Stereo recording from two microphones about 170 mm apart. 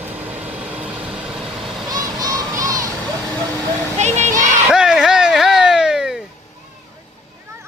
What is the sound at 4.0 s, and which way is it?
Children playing, 40° right (ahead or behind).